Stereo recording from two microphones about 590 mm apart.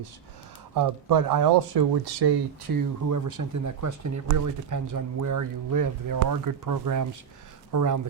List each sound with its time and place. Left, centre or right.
0.7 s speech: right